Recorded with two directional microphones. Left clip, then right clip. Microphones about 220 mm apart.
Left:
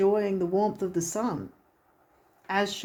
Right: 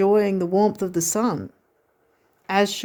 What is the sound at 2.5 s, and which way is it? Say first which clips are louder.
Speech: right 7 dB; 50° right (ahead or behind).